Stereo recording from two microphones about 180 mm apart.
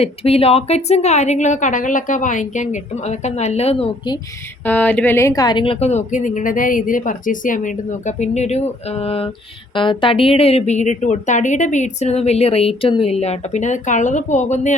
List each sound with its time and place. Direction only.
0.0 s a woman's voice: 35° left (ahead or behind)
4.6 s a woman's voice: 10° left (ahead or behind); by 14.8 s 40° left (ahead or behind)